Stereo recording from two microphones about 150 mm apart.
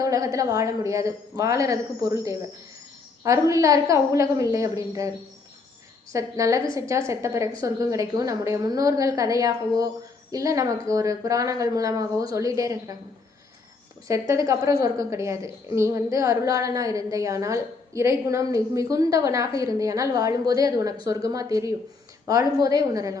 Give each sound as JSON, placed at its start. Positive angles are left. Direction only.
{"t": 0.0, "sound": "a woman's voice", "side_deg": -20}
{"t": 6.1, "sound": "a woman's voice", "side_deg": -20}
{"t": 14.1, "sound": "a woman's voice", "side_deg": -20}